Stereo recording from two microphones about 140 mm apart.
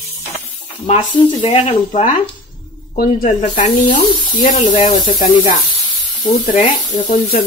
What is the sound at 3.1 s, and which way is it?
Speech, 65° left (ahead or behind).